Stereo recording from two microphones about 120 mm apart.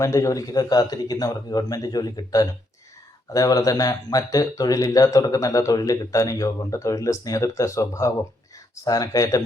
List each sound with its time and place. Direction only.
0.0 s a man's voice: 25° left (ahead or behind)